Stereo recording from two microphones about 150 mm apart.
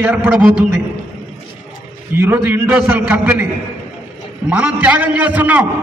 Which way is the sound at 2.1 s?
10° right (ahead or behind).